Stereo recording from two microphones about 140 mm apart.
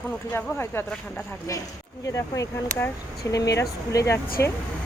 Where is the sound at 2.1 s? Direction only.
25° left (ahead or behind).